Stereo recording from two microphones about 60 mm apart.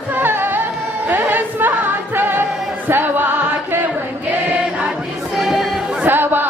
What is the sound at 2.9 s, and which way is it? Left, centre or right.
Chant, right.